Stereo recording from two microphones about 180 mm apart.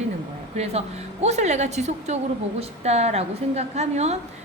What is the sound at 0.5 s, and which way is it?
A woman's voice, 35° right (ahead or behind).